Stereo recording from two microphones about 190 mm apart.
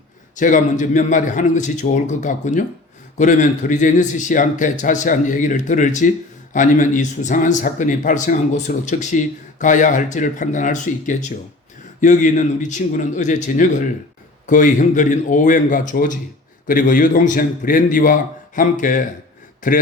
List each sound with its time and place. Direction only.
0.3 s a man's voice: 45° left (ahead or behind)